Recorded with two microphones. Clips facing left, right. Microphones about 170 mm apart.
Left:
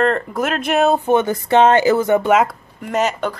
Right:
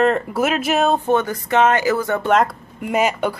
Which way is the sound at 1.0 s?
20° left (ahead or behind).